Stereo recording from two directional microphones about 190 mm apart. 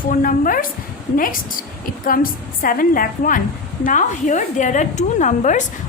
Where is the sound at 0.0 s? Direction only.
45° left (ahead or behind).